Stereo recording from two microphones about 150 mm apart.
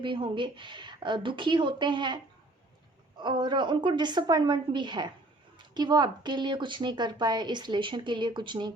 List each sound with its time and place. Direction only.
0.0 s speech: 35° right (ahead or behind)
3.2 s speech: 30° right (ahead or behind)